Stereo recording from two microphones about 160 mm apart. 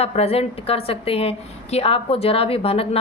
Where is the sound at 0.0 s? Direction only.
40° left (ahead or behind).